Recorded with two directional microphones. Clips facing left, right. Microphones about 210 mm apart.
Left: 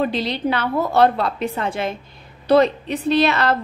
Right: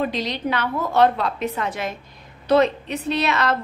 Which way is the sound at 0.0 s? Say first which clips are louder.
Left 3 dB; 30° left (ahead or behind).